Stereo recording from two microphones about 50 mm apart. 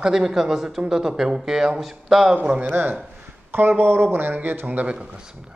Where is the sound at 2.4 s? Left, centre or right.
Right.